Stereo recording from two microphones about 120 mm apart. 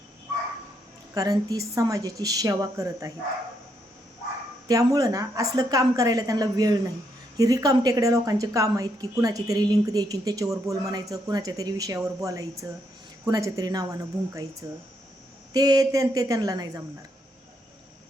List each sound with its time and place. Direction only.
1.1 s a woman's voice: 30° right (ahead or behind)
4.7 s a woman's voice: 30° right (ahead or behind)